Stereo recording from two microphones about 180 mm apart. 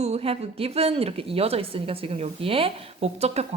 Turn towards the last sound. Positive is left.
turn(degrees=-35)  # may be behind; listen again after turning